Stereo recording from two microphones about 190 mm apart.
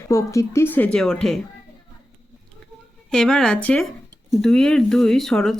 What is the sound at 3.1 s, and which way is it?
Speech, 5° left (ahead or behind).